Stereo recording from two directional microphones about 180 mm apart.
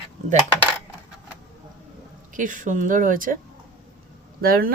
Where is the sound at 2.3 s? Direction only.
45° right (ahead or behind).